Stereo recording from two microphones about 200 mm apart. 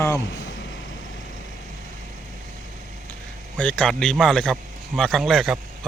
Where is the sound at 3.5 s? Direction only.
5° left (ahead or behind).